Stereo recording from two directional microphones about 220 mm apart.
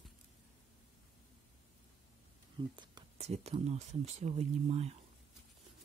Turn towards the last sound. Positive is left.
turn(degrees=-30)  # may be behind; listen again after turning